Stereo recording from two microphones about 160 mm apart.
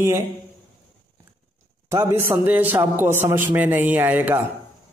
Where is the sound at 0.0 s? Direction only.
15° right (ahead or behind).